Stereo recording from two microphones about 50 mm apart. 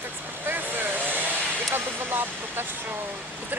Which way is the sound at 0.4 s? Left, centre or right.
Right.